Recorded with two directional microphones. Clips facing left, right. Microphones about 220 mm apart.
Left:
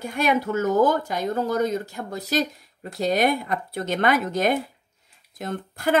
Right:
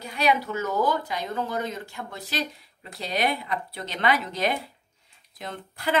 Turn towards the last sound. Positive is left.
turn(degrees=45)  # may be behind; listen again after turning